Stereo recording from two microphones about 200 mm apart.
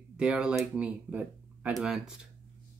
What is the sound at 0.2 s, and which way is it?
Speech, 5° right (ahead or behind).